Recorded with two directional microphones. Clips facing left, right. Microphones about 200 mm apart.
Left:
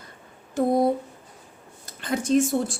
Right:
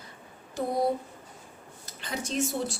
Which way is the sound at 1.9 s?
50° left (ahead or behind).